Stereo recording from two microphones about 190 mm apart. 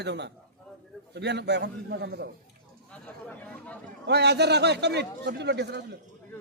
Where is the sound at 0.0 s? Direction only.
65° right (ahead or behind).